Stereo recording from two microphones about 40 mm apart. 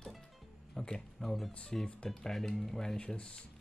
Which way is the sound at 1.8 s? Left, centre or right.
Left.